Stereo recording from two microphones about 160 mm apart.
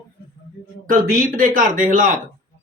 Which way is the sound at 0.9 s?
55° right (ahead or behind).